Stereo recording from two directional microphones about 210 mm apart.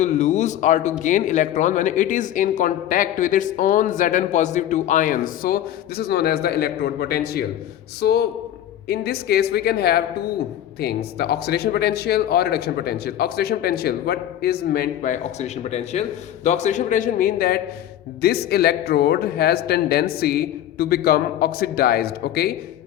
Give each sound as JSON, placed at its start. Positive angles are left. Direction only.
{"t": 0.0, "sound": "a man's voice", "side_deg": 35}